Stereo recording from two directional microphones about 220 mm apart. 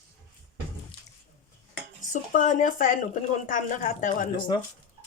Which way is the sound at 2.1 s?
35° left (ahead or behind).